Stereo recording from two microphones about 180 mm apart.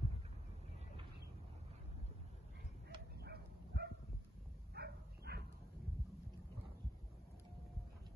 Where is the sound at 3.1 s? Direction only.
65° right (ahead or behind).